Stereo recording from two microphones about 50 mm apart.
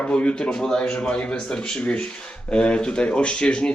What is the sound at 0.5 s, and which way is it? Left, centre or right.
A man's voice, centre.